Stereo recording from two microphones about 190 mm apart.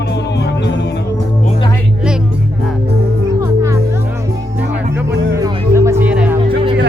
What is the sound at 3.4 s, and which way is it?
Music, 15° right (ahead or behind).